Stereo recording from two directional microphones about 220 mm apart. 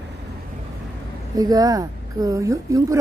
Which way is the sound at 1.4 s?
15° right (ahead or behind).